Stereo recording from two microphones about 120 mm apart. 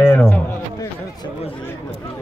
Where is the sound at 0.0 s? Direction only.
20° left (ahead or behind).